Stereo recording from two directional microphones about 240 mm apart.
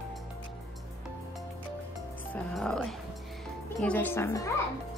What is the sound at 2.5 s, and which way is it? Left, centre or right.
A woman's voice, centre.